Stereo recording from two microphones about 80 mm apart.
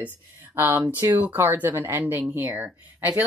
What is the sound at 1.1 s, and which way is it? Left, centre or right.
Speech, right.